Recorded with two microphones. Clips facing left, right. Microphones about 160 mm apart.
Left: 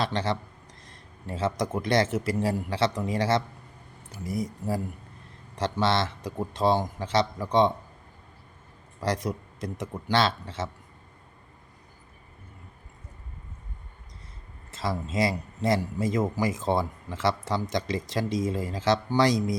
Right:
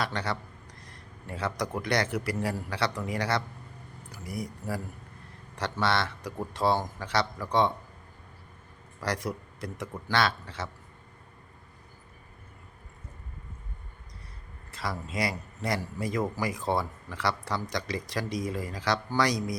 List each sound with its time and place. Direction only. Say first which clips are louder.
0.0 s a man's voice: left 4 dB; 25° left (ahead or behind)
9.0 s a man's voice: left 3 dB; 20° left (ahead or behind)
14.7 s a man's voice: left 4 dB; 25° left (ahead or behind)